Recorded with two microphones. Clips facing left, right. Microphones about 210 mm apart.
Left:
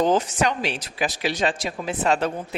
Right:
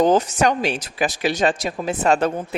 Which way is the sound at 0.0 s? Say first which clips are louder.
Right 4 dB; 45° right (ahead or behind).